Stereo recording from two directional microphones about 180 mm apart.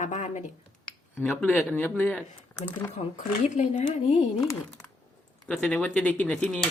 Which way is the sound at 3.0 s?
35° left (ahead or behind).